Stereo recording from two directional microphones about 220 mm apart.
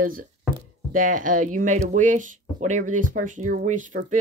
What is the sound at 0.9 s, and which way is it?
Speech, 35° right (ahead or behind).